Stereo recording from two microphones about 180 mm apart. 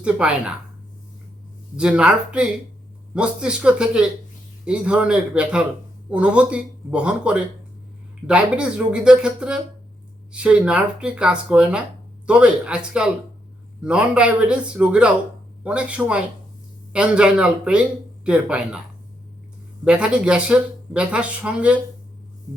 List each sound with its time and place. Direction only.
0.0 s speech: 5° right (ahead or behind)
1.7 s speech: 5° right (ahead or behind)
19.8 s speech: 5° right (ahead or behind)